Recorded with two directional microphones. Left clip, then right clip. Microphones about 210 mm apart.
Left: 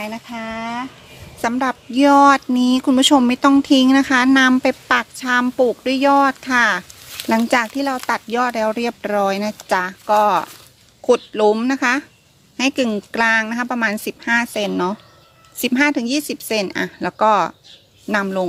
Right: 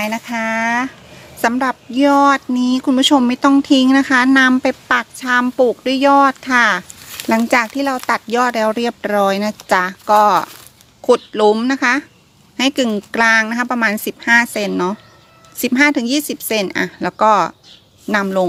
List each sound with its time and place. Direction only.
0.0 s speech: 30° right (ahead or behind)
1.4 s a woman's voice: 5° right (ahead or behind)